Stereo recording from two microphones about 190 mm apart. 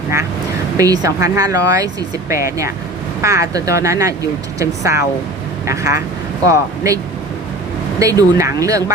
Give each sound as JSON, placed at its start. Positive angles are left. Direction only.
{"t": 0.8, "sound": "speech", "side_deg": -20}